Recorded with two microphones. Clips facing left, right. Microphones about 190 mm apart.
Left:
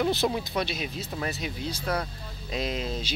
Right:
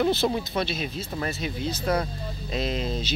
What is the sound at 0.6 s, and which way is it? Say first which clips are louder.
Speech: right 2 dB; 10° left (ahead or behind).